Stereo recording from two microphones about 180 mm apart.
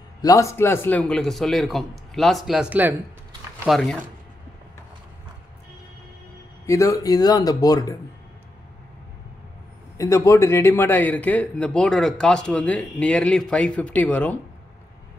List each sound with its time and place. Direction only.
0.2 s a man's voice: 20° left (ahead or behind); by 3.0 s 10° right (ahead or behind)
3.6 s a man's voice: centre (ahead or behind)
6.6 s speech: 15° left (ahead or behind)
9.9 s a man's voice: 15° left (ahead or behind)